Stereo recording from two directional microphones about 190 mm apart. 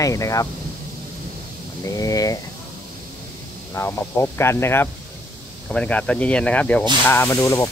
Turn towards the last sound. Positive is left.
turn(degrees=15)  # may be behind; listen again after turning